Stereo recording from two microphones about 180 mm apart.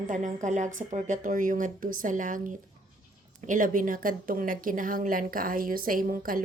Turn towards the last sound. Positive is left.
turn(degrees=-50)  # may be behind; listen again after turning